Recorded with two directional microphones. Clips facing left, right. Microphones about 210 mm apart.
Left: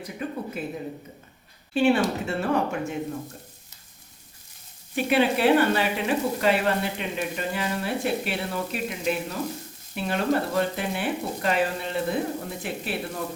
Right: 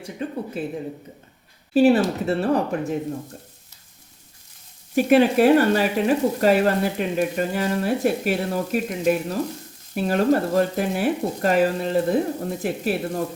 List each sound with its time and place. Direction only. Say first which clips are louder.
0.0 s a sound: right 3 dB; 30° right (ahead or behind)
1.7 s speech: right 5 dB; 40° right (ahead or behind)
4.9 s speech: right 6 dB; 45° right (ahead or behind)